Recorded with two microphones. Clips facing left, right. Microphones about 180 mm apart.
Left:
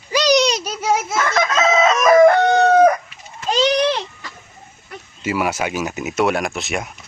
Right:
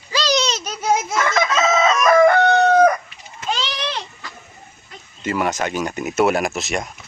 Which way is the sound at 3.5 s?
45° left (ahead or behind).